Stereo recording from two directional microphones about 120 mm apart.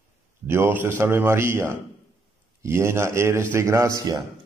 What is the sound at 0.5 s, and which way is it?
Speech, 15° right (ahead or behind).